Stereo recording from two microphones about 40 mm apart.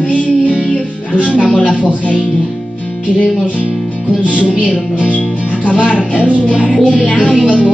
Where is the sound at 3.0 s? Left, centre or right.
Left.